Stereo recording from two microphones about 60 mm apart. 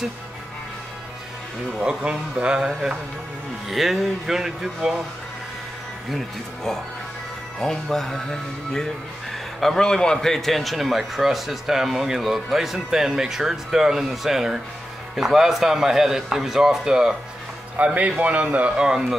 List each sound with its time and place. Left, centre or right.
1.8 s a man's voice: centre
3.6 s speech: centre
6.0 s a man's voice: centre
17.7 s speech: right